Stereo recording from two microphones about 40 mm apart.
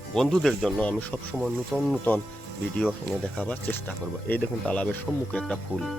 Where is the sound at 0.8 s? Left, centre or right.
Left.